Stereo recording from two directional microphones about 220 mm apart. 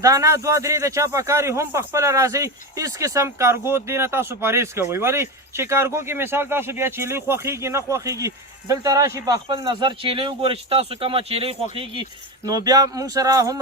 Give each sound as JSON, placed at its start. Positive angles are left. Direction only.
{"t": 0.0, "sound": "a man's voice", "side_deg": -15}